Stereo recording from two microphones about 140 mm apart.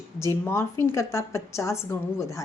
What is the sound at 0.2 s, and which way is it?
A woman's voice, 20° left (ahead or behind).